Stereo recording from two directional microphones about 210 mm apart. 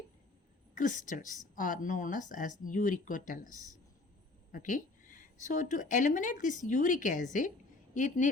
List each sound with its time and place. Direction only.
0.7 s a woman's voice: 40° left (ahead or behind)
4.5 s a woman's voice: 40° left (ahead or behind)